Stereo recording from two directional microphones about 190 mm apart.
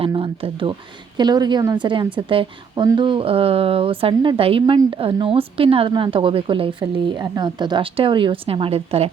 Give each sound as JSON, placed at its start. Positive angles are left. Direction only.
{"t": 0.0, "sound": "speech", "side_deg": -30}